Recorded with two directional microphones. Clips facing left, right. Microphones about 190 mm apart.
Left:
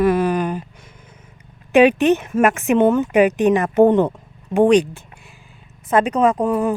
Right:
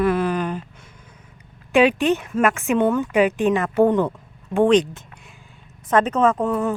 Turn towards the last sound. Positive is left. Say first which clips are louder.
# left 2 dB
turn(degrees=10)  # may be behind; listen again after turning